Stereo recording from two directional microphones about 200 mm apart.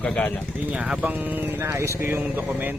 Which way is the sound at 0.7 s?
5° right (ahead or behind).